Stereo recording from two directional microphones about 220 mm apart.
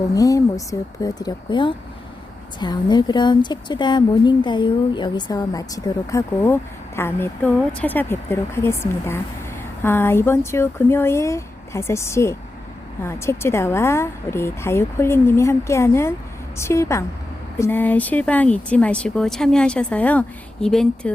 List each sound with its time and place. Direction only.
0.1 s speech: 15° left (ahead or behind)